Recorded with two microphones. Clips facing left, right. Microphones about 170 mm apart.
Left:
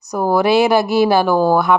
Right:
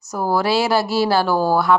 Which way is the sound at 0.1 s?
20° left (ahead or behind).